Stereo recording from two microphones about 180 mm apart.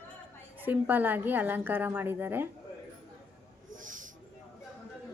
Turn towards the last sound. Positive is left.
turn(degrees=-45)  # may be behind; listen again after turning